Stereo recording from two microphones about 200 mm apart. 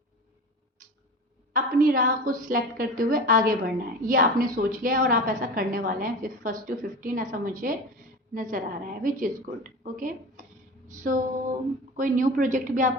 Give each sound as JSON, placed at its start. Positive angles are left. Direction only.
{"t": 1.5, "sound": "a woman's voice", "side_deg": -45}
{"t": 10.8, "sound": "a sound", "side_deg": -40}
{"t": 11.9, "sound": "a woman's voice", "side_deg": -40}